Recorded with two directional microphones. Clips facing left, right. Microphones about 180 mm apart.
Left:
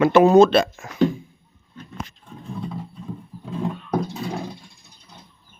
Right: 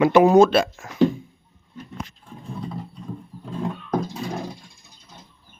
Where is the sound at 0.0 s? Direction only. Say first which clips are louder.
Left 1 dB; 15° right (ahead or behind).